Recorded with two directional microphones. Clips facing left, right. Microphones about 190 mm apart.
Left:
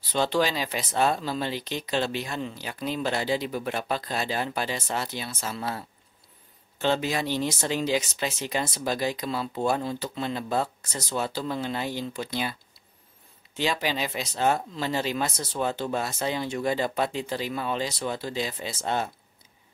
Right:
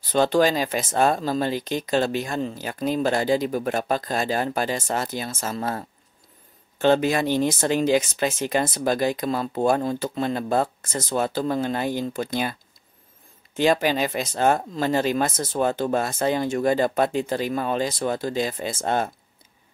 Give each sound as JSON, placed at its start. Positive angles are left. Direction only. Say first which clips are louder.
{"t": 0.1, "sound": "speech", "louder": "right 6 dB", "side_deg": -45}
{"t": 13.6, "sound": "speech", "louder": "right 7 dB", "side_deg": -50}